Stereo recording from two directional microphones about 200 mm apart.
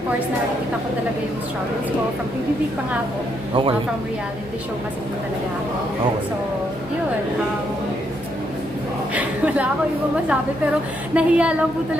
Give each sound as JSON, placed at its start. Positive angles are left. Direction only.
{"t": 3.5, "sound": "speech", "side_deg": -25}
{"t": 9.1, "sound": "a woman's voice", "side_deg": -5}
{"t": 11.1, "sound": "a woman's voice", "side_deg": -5}